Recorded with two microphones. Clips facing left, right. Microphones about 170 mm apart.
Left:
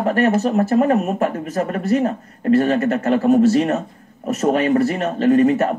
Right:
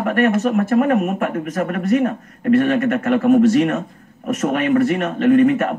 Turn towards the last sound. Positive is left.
turn(degrees=35)  # may be behind; listen again after turning